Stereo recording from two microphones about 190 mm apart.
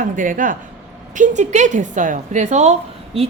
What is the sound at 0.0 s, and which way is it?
A woman's voice, 45° right (ahead or behind).